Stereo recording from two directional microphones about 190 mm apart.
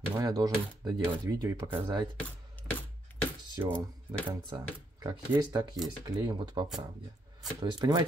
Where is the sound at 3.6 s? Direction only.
15° right (ahead or behind).